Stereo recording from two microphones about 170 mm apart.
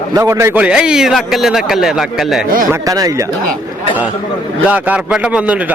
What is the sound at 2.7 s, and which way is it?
Speech, 20° right (ahead or behind).